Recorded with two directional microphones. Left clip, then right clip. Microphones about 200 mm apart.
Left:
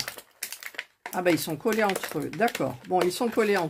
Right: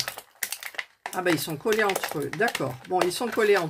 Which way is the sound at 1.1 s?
30° left (ahead or behind).